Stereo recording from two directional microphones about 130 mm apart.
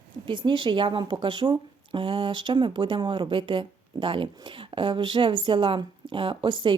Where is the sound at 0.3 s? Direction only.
40° right (ahead or behind).